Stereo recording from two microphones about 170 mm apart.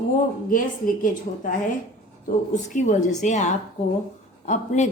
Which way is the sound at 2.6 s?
45° left (ahead or behind).